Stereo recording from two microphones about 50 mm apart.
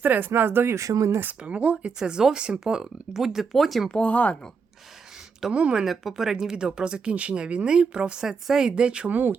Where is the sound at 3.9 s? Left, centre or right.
Left.